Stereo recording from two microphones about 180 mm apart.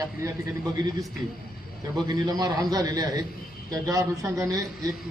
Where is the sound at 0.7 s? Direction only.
20° right (ahead or behind).